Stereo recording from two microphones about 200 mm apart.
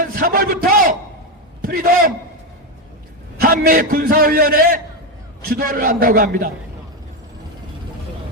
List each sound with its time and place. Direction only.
0.0 s a man's voice: 45° right (ahead or behind)
3.4 s a man's voice: 45° right (ahead or behind)